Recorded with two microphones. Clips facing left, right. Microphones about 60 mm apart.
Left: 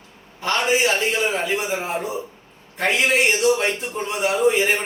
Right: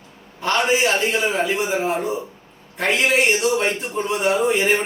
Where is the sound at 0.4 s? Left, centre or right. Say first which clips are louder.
Right 1 dB; centre.